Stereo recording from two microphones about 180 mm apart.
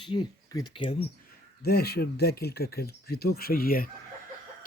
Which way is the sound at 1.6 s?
60° left (ahead or behind).